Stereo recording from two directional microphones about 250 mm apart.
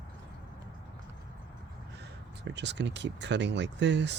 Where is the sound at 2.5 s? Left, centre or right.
Right.